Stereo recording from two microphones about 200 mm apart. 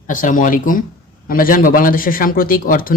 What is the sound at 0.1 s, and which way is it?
A man's voice, 40° left (ahead or behind).